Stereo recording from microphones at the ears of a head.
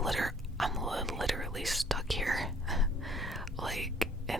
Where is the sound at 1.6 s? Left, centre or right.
Centre.